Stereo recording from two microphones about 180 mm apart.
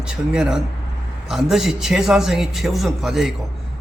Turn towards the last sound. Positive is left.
turn(degrees=0)  # may be behind; listen again after turning